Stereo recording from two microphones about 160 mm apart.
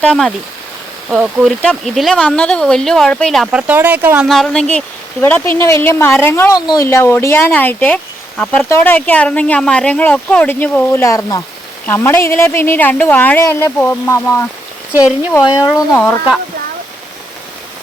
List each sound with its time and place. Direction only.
0.0 s speech: 5° left (ahead or behind)
4.3 s speech: 5° left (ahead or behind)
5.2 s speech: 15° left (ahead or behind)
15.9 s speech: 15° left (ahead or behind)